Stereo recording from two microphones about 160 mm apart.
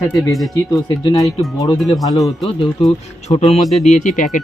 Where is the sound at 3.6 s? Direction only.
Centre (ahead or behind).